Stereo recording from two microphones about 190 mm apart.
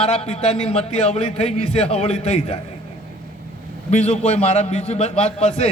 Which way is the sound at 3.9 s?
35° left (ahead or behind).